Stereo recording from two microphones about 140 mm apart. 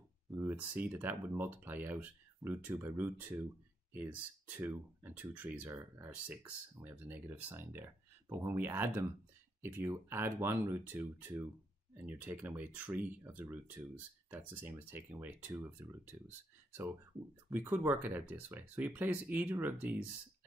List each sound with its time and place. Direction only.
0.3 s speech: 15° right (ahead or behind)